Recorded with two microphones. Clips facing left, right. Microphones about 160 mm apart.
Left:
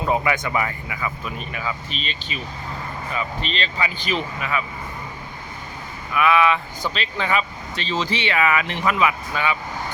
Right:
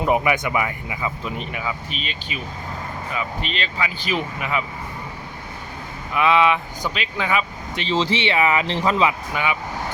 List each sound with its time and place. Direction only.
0.0 s speech: 15° right (ahead or behind)
1.9 s speech: 5° right (ahead or behind)
6.1 s speech: 20° right (ahead or behind)
7.8 s speech: 25° right (ahead or behind)
9.3 s speech: 15° right (ahead or behind)